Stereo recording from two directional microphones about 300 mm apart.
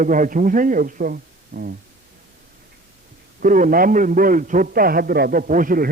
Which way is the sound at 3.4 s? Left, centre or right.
Right.